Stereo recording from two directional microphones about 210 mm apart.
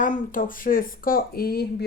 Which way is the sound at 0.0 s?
40° left (ahead or behind).